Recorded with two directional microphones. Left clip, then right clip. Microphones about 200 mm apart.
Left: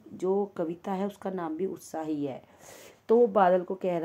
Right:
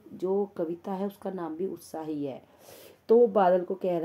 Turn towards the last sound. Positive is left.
turn(degrees=15)  # may be behind; listen again after turning